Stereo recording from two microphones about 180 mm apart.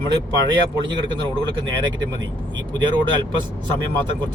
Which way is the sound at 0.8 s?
25° right (ahead or behind).